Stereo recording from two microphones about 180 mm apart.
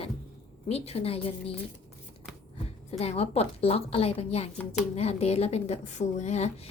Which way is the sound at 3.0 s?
35° left (ahead or behind).